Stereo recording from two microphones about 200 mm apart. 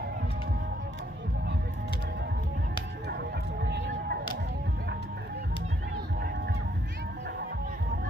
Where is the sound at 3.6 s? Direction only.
55° right (ahead or behind).